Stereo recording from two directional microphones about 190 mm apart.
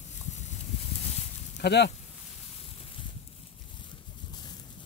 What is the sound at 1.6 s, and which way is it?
Speech, 65° left (ahead or behind).